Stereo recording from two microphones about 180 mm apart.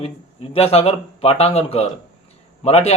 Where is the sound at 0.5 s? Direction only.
35° left (ahead or behind).